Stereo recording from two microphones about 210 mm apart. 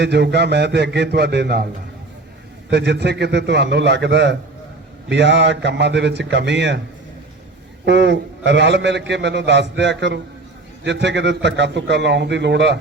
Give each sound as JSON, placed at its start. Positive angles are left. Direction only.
{"t": 0.0, "sound": "a man's voice", "side_deg": -55}
{"t": 2.6, "sound": "a man's voice", "side_deg": -55}
{"t": 7.9, "sound": "a man's voice", "side_deg": -55}